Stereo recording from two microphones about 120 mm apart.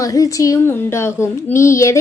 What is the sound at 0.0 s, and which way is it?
A woman's voice, 25° left (ahead or behind).